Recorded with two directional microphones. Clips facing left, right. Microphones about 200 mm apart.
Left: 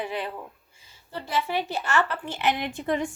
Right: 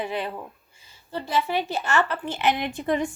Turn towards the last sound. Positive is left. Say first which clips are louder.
# right 2 dB
turn(degrees=-15)  # may be behind; listen again after turning